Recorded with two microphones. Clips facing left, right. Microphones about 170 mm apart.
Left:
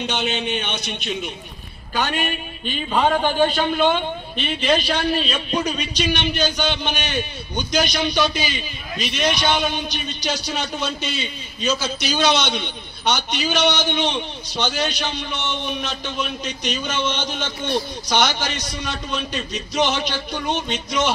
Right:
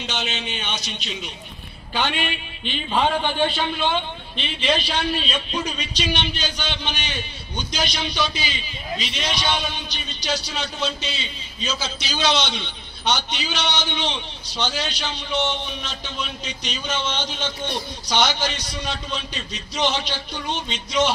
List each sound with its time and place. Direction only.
0.0 s a man's voice: 55° left (ahead or behind)
2.0 s a man's voice: 45° left (ahead or behind)